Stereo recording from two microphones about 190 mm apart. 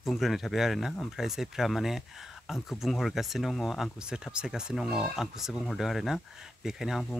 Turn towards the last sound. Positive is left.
turn(degrees=0)  # may be behind; listen again after turning